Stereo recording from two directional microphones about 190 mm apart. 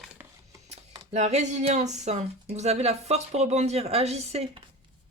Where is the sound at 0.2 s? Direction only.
10° right (ahead or behind).